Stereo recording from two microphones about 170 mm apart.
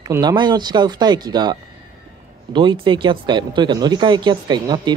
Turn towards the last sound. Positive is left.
turn(degrees=-25)  # may be behind; listen again after turning